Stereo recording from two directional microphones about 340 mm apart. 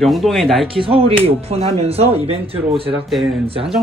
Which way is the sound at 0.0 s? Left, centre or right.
Centre.